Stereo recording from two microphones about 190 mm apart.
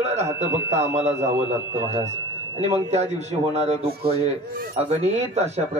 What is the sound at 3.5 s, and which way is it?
Speech, 30° right (ahead or behind).